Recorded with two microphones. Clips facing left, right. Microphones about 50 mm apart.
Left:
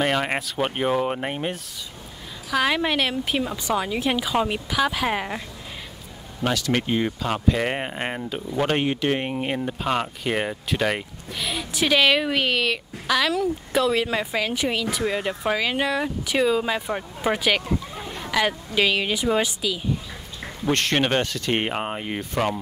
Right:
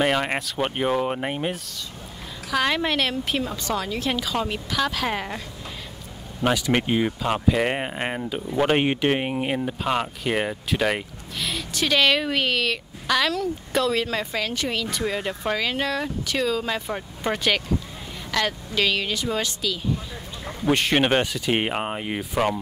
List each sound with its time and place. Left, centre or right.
0.0 s speech: centre
6.4 s speech: centre
8.8 s speech: right
9.1 s speech: centre
20.6 s speech: centre